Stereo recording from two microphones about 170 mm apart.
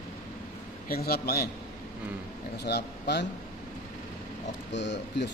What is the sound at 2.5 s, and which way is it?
Speech, 75° left (ahead or behind).